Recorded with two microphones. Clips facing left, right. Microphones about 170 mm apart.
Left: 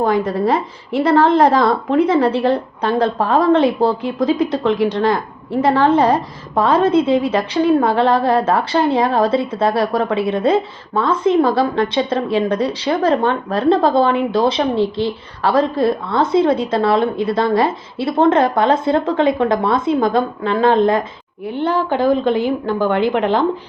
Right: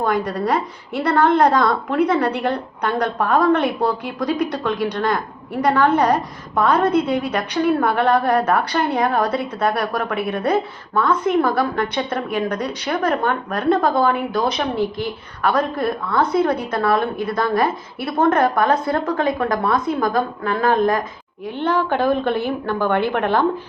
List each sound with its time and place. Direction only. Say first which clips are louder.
0.0 s a woman's voice: left 4 dB; 25° left (ahead or behind)
21.5 s a woman's voice: left 2 dB; 10° left (ahead or behind)